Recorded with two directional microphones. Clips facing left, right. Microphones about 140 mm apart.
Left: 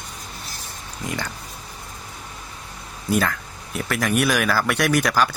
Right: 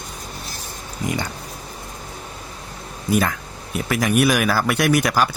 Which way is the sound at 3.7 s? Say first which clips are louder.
Right 3 dB; 10° right (ahead or behind).